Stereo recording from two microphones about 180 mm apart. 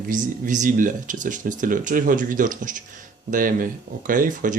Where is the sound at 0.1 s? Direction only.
45° right (ahead or behind).